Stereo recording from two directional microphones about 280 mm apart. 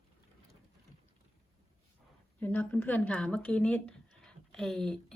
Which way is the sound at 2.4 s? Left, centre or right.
Centre.